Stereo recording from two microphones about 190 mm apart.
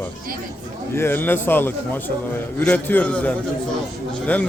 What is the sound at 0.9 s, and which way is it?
Speech, 10° left (ahead or behind).